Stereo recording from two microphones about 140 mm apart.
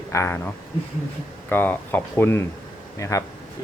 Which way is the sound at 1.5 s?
15° left (ahead or behind).